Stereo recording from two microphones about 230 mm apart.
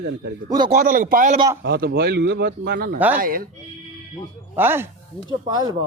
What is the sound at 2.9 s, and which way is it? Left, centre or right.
Speech, centre.